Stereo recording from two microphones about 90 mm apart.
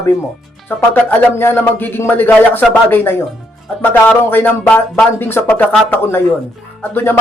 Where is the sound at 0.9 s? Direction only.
25° left (ahead or behind).